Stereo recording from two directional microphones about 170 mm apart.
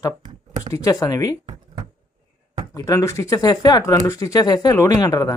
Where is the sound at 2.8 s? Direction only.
15° left (ahead or behind).